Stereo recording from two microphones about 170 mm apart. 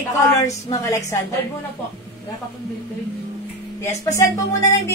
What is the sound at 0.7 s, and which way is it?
Speech, 20° left (ahead or behind).